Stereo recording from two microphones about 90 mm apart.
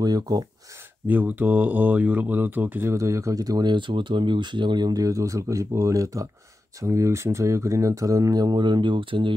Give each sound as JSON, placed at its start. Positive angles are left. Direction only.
{"t": 0.0, "sound": "speech", "side_deg": -45}
{"t": 1.0, "sound": "speech", "side_deg": -20}
{"t": 2.9, "sound": "speech", "side_deg": -35}